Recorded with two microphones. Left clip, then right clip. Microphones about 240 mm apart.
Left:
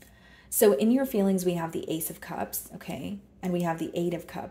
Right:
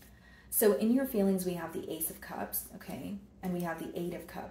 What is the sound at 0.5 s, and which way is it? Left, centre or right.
Speech, left.